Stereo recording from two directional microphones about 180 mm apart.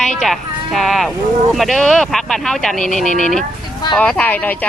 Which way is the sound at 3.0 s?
45° left (ahead or behind).